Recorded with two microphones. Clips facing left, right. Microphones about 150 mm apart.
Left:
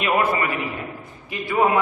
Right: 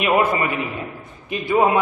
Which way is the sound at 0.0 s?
20° right (ahead or behind).